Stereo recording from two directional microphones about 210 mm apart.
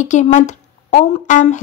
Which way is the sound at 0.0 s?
35° left (ahead or behind).